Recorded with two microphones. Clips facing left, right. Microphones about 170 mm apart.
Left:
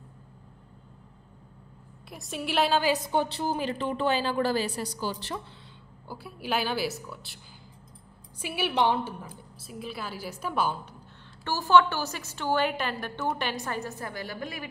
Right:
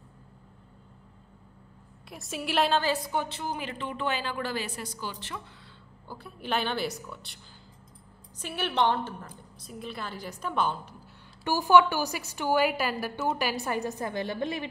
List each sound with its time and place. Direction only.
2.0 s a woman's voice: centre (ahead or behind)
2.8 s a woman's voice: 15° left (ahead or behind)
3.1 s a woman's voice: 30° left (ahead or behind)
6.0 s a woman's voice: 10° left (ahead or behind)
8.4 s a woman's voice: 10° left (ahead or behind)
11.4 s a woman's voice: 15° right (ahead or behind)